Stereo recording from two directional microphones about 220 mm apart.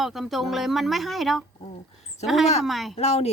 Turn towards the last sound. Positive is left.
turn(degrees=30)  # may be behind; listen again after turning